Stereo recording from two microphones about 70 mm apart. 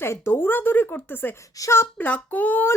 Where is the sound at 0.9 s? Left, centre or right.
Left.